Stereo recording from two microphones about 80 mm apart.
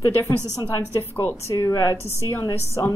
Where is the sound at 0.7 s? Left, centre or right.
Left.